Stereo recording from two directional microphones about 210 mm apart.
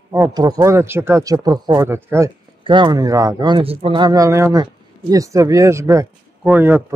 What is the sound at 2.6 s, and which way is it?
A man's voice, 20° right (ahead or behind).